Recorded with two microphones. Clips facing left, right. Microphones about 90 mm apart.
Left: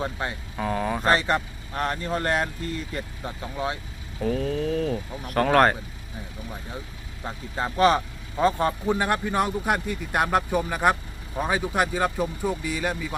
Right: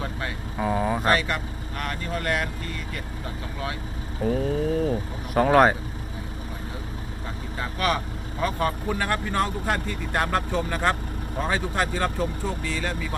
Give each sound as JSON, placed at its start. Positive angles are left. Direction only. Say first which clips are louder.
{"t": 0.0, "sound": "speech", "louder": "left 2 dB", "side_deg": 25}
{"t": 0.5, "sound": "speech", "louder": "right 3 dB", "side_deg": -10}
{"t": 1.0, "sound": "speech", "louder": "left 1 dB", "side_deg": 30}
{"t": 4.2, "sound": "speech", "louder": "right 1 dB", "side_deg": -5}
{"t": 7.5, "sound": "speech", "louder": "left 6 dB", "side_deg": 30}